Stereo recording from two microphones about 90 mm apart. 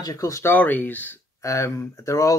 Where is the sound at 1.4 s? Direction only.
35° left (ahead or behind).